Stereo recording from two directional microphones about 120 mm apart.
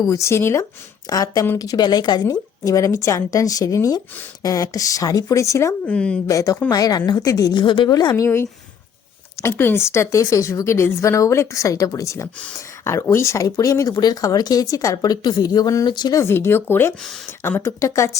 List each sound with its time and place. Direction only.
0.1 s a woman's voice: 25° left (ahead or behind)
5.9 s speech: 10° left (ahead or behind)
6.2 s a woman's voice: 25° left (ahead or behind)
16.2 s a woman's voice: 20° left (ahead or behind)